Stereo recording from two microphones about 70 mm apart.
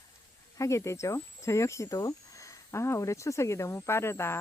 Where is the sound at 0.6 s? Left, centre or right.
Left.